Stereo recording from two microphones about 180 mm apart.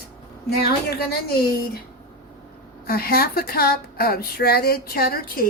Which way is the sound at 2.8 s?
55° left (ahead or behind).